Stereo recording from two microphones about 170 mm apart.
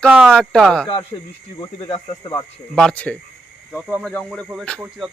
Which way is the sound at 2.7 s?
5° left (ahead or behind).